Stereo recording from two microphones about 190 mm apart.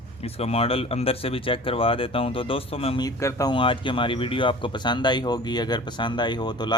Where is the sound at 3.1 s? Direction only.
15° left (ahead or behind).